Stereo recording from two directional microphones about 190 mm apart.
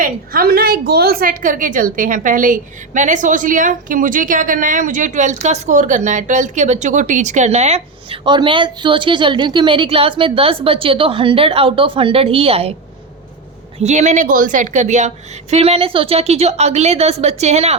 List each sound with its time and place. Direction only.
0.0 s a woman's voice: 50° right (ahead or behind); by 12.7 s 30° right (ahead or behind)
13.7 s a woman's voice: 40° right (ahead or behind)